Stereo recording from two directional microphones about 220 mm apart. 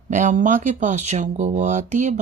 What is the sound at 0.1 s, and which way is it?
Speech, 35° right (ahead or behind).